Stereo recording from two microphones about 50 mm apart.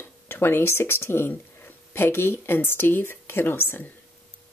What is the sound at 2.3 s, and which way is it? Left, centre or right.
Speech, left.